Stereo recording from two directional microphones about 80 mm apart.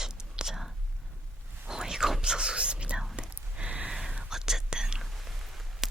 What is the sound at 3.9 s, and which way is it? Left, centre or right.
Whispering, centre.